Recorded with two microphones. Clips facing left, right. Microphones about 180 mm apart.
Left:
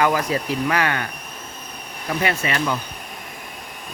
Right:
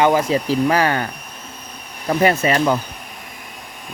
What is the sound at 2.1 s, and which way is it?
Speech, 40° right (ahead or behind).